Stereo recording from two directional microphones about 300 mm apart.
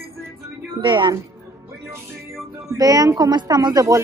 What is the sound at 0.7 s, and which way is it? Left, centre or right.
A woman's voice, centre.